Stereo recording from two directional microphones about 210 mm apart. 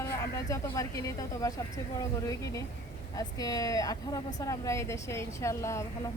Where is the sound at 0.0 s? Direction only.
15° left (ahead or behind).